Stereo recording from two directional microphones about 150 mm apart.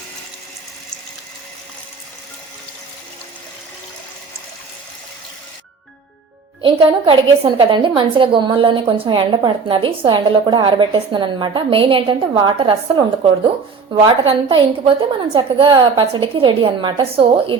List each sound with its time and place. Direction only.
6.6 s a woman's voice: 35° right (ahead or behind)
13.9 s a woman's voice: 35° right (ahead or behind)